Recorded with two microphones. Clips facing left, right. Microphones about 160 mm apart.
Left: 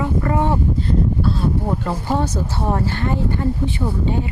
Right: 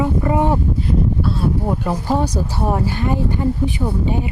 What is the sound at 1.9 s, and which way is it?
A woman's voice, 15° right (ahead or behind).